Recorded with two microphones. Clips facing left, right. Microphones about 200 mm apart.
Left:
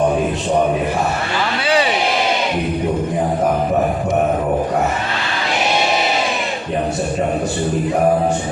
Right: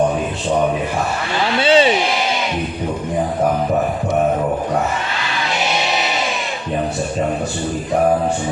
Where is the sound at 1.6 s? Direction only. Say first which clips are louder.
Right 5 dB; 25° right (ahead or behind).